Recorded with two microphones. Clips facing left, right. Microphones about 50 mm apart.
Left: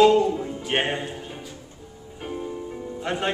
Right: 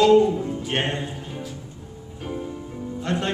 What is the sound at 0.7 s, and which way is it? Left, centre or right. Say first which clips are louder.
Music: left 3 dB; centre.